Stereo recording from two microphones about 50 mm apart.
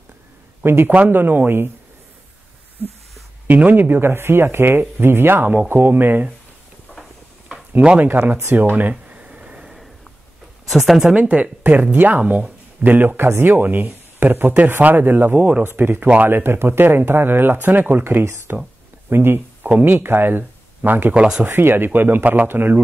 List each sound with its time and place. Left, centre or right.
0.7 s speech: right
0.9 s speech: right
3.4 s speech: right
6.9 s a sound: centre
8.0 s speech: right
9.1 s a sound: right
10.7 s speech: centre
11.1 s speech: right
12.8 s speech: right
15.3 s speech: right
15.6 s speech: right
19.6 s speech: right
21.1 s speech: centre
21.5 s speech: right